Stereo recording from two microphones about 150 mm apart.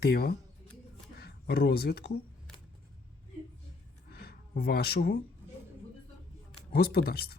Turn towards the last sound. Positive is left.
turn(degrees=90)